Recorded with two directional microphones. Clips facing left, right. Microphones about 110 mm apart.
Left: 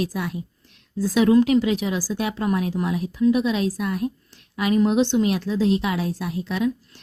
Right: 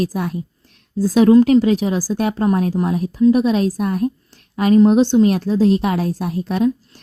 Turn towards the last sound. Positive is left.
turn(degrees=-40)  # may be behind; listen again after turning